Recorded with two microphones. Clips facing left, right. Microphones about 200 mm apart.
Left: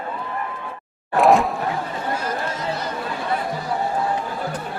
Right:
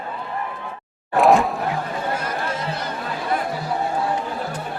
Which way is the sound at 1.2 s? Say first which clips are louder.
Even; centre (ahead or behind).